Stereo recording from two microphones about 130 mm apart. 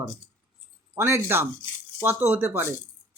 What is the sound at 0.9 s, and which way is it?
Speech, 20° right (ahead or behind).